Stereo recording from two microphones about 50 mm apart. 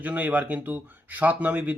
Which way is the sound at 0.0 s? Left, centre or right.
Right.